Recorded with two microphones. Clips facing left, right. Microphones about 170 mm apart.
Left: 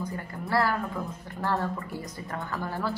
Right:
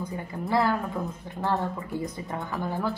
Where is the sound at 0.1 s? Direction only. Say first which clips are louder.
Right 4 dB; 20° right (ahead or behind).